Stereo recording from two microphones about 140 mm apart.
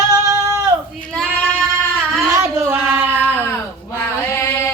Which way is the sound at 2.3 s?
20° right (ahead or behind).